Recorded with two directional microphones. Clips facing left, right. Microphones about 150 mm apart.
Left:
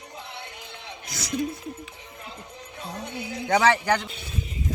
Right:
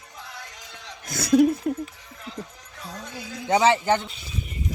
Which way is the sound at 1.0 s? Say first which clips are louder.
Right 11 dB; 55° right (ahead or behind).